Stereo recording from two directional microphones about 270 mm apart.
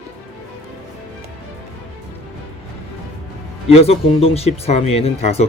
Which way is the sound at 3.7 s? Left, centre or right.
Left.